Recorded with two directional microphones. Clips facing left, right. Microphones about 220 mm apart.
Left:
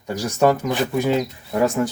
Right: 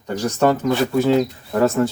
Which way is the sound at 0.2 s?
10° left (ahead or behind).